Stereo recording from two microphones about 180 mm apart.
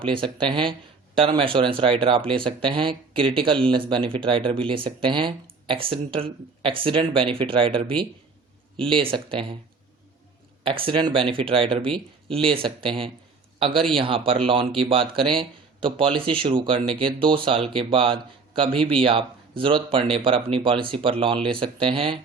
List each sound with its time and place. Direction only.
0.0 s speech: 30° right (ahead or behind)
10.6 s a man's voice: 30° right (ahead or behind)